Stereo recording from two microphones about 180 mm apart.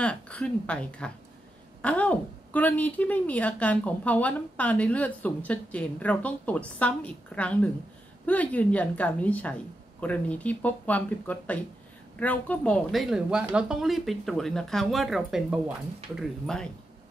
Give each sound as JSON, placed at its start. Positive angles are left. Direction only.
{"t": 0.0, "sound": "a woman's voice", "side_deg": 5}